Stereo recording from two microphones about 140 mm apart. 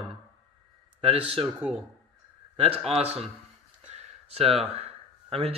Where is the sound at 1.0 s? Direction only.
45° right (ahead or behind).